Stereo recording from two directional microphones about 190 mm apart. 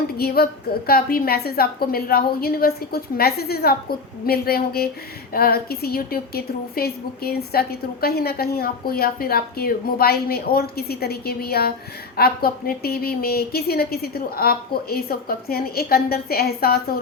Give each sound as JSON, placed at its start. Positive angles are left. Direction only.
{"t": 0.2, "sound": "a woman's voice", "side_deg": 55}